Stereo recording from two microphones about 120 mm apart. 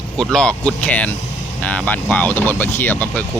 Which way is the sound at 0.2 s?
5° left (ahead or behind).